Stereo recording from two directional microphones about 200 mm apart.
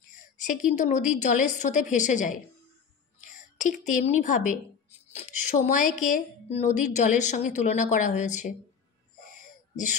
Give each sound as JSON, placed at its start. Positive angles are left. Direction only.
{"t": 0.2, "sound": "a woman's voice", "side_deg": 40}